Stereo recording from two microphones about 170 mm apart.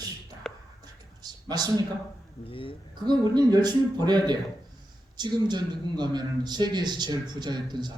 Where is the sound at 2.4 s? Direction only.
30° left (ahead or behind).